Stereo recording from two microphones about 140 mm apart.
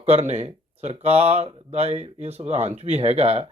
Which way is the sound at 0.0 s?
50° right (ahead or behind).